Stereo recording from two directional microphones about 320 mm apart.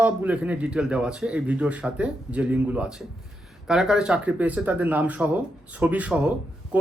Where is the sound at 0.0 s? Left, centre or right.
Centre.